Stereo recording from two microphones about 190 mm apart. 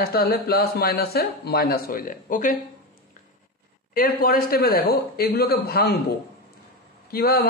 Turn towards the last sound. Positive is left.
turn(degrees=55)  # may be behind; listen again after turning